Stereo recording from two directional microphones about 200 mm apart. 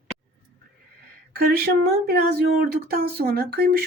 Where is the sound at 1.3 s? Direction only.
50° right (ahead or behind).